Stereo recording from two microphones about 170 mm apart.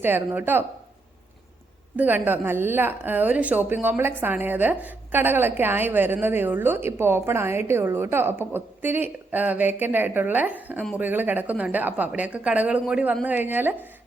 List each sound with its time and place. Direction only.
0.0 s a woman's voice: 10° right (ahead or behind)
2.0 s a woman's voice: 10° right (ahead or behind)